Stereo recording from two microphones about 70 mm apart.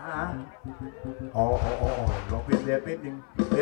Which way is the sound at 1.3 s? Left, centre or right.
Centre.